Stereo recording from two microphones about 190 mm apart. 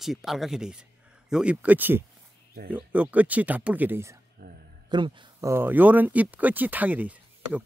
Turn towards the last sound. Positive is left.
turn(degrees=-10)  # may be behind; listen again after turning